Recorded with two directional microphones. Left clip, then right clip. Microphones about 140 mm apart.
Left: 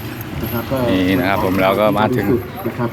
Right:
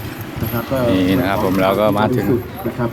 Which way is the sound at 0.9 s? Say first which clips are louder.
Left 1 dB; 25° right (ahead or behind).